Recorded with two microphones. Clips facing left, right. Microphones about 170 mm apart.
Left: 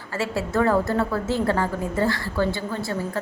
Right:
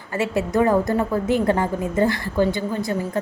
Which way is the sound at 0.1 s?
20° right (ahead or behind).